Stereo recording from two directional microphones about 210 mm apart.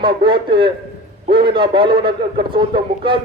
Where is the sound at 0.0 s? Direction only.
25° right (ahead or behind).